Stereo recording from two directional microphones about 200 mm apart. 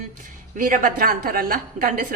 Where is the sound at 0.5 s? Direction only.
40° right (ahead or behind).